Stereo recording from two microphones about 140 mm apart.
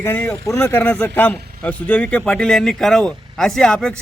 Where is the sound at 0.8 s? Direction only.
10° left (ahead or behind).